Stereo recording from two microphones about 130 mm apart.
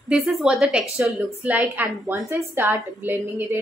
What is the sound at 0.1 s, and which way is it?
A woman's voice, 5° right (ahead or behind).